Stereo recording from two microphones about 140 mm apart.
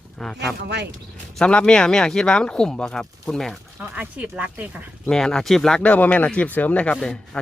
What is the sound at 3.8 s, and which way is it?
Speech, 10° right (ahead or behind).